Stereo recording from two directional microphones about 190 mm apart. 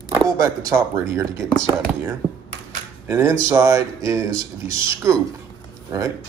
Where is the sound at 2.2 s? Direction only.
20° right (ahead or behind).